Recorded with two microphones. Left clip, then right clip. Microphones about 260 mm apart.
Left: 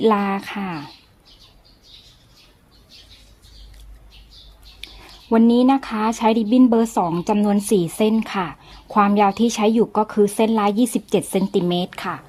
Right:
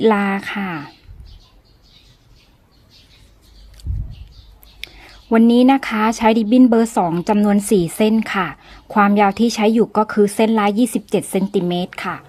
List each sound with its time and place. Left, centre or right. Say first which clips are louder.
0.0 s speech: right 2 dB; centre
5.3 s speech: right 3 dB; centre